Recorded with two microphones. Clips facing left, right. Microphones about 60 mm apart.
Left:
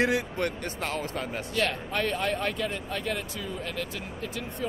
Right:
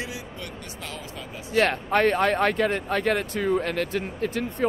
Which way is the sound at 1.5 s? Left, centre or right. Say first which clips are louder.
Right 8 dB; right.